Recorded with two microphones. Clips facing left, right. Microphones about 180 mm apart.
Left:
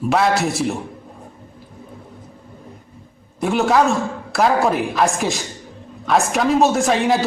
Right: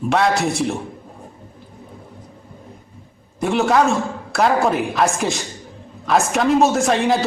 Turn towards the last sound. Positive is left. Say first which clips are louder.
# even
turn(degrees=0)  # may be behind; listen again after turning